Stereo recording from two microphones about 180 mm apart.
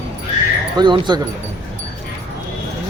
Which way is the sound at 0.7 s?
25° right (ahead or behind).